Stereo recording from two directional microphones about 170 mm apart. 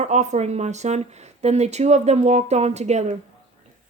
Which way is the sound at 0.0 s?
40° right (ahead or behind).